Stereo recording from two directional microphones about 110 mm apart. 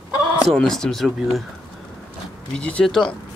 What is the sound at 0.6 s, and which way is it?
Speech, 5° left (ahead or behind).